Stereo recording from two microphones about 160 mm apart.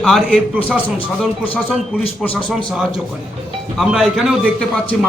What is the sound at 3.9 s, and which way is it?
Speech, centre (ahead or behind).